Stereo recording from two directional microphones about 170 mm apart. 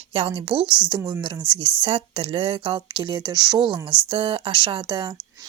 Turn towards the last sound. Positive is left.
turn(degrees=-25)  # may be behind; listen again after turning